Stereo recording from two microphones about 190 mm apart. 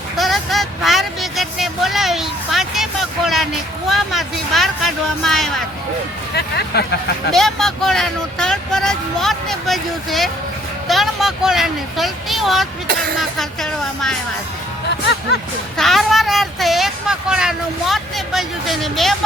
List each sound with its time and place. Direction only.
0.2 s vehicle: centre (ahead or behind)
3.8 s speech: centre (ahead or behind)
6.3 s speech: 60° left (ahead or behind)
7.3 s speech: centre (ahead or behind)
15.8 s speech: centre (ahead or behind)